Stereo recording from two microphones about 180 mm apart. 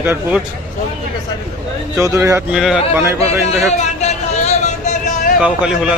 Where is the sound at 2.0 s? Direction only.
15° right (ahead or behind).